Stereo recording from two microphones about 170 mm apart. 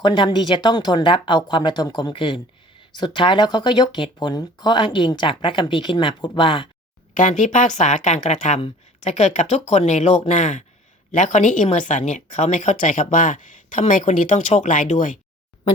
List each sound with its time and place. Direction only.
0.0 s speech: 25° left (ahead or behind)
7.1 s speech: 50° left (ahead or behind)